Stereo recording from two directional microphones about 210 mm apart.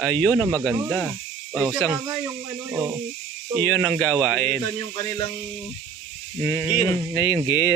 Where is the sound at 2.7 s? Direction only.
10° right (ahead or behind).